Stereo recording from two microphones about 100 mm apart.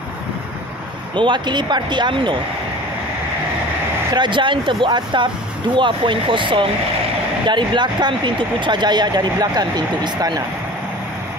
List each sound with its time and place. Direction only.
1.1 s speech: 50° right (ahead or behind)
4.1 s speech: 50° right (ahead or behind)